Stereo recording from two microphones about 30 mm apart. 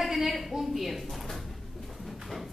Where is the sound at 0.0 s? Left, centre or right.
Centre.